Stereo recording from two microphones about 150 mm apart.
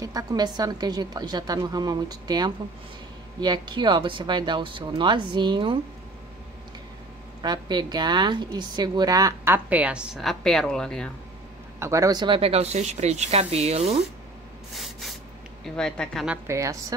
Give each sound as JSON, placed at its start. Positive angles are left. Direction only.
{"t": 0.0, "sound": "a woman's voice", "side_deg": -25}
{"t": 7.4, "sound": "a woman's voice", "side_deg": -30}
{"t": 11.8, "sound": "speech", "side_deg": -20}
{"t": 14.7, "sound": "spray", "side_deg": 0}
{"t": 15.6, "sound": "speech", "side_deg": 5}
{"t": 16.4, "sound": "a woman's voice", "side_deg": -20}